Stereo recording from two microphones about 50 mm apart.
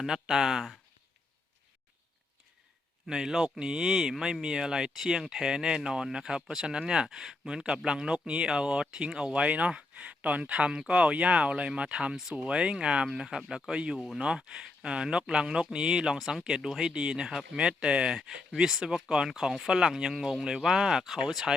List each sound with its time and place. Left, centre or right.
0.0 s speech: centre
3.1 s speech: centre
7.5 s speech: centre
16.9 s speech: centre